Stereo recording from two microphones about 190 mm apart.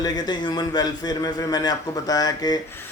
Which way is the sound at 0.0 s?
20° left (ahead or behind).